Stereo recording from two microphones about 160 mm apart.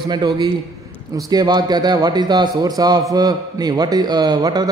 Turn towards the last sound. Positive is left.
turn(degrees=-25)  # may be behind; listen again after turning